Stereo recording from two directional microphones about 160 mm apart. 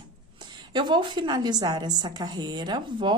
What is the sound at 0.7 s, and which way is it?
A woman's voice, 30° right (ahead or behind).